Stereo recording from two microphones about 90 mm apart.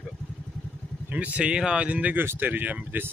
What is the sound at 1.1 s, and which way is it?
Speech, 15° right (ahead or behind).